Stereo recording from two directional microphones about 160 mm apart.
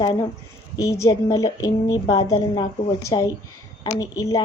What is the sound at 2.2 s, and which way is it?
Speech, 35° left (ahead or behind).